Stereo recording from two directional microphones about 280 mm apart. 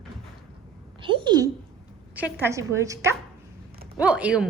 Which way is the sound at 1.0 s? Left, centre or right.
Centre.